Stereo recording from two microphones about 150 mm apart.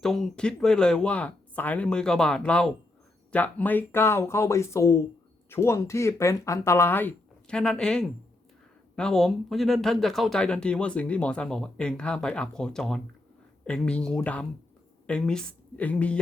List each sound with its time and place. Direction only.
0.0 s a woman's voice: 5° left (ahead or behind)